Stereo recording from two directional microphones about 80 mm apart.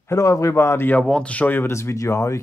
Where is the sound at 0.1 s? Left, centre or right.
Left.